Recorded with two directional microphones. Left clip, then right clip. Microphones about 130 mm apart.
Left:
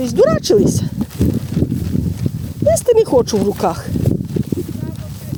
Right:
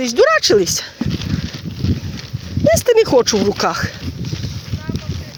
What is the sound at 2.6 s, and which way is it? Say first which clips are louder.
Speech: even; 25° left (ahead or behind).